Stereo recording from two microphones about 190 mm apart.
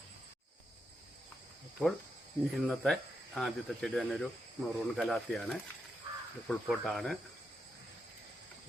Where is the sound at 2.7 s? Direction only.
5° left (ahead or behind).